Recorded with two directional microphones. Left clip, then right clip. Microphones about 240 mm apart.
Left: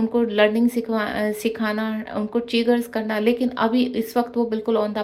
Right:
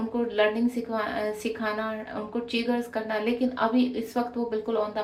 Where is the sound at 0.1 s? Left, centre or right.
Left.